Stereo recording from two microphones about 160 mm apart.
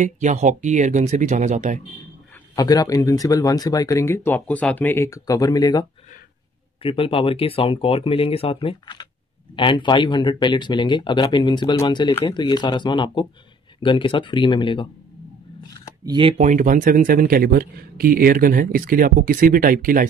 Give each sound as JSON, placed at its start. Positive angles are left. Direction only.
{"t": 0.0, "sound": "speech", "side_deg": -50}
{"t": 2.5, "sound": "speech", "side_deg": 25}
{"t": 6.8, "sound": "speech", "side_deg": 35}
{"t": 16.1, "sound": "speech", "side_deg": -30}
{"t": 16.3, "sound": "speech", "side_deg": -55}